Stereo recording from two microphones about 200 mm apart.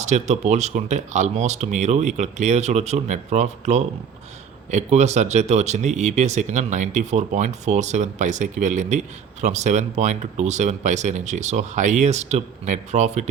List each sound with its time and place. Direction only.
0.0 s speech: 35° right (ahead or behind)